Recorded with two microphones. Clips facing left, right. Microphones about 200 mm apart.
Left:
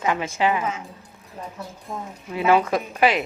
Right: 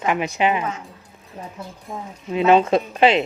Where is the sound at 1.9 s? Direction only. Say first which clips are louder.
Even; centre (ahead or behind).